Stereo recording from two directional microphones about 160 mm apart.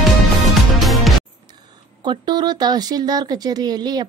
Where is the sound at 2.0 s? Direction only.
30° right (ahead or behind).